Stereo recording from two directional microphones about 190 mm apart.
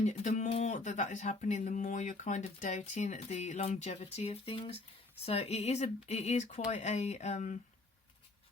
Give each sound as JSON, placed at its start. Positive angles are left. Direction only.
{"t": 0.0, "sound": "speech", "side_deg": 40}